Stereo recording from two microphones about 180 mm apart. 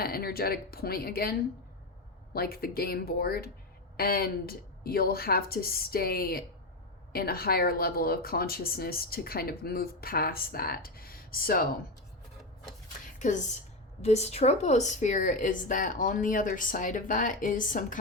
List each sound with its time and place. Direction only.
0.0 s speech: 55° left (ahead or behind)
13.1 s a woman's voice: 45° left (ahead or behind)